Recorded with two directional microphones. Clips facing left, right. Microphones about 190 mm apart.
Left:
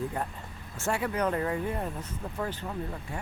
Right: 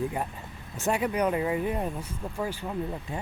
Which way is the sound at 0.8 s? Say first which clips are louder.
Right 3 dB; 15° right (ahead or behind).